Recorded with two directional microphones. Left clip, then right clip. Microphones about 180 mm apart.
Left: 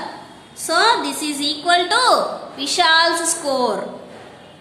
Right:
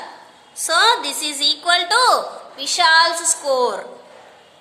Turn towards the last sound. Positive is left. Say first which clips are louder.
# right 1 dB
turn(degrees=-35)  # may be behind; listen again after turning